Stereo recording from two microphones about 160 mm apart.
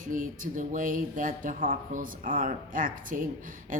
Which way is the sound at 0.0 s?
60° right (ahead or behind).